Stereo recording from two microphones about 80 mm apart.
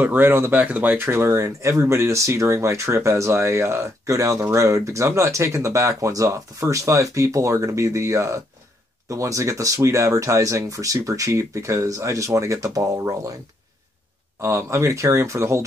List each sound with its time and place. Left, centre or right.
0.0 s speech: right
14.4 s speech: right